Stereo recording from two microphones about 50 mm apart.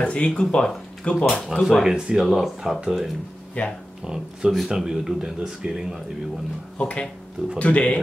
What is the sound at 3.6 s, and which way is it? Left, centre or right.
Speech, left.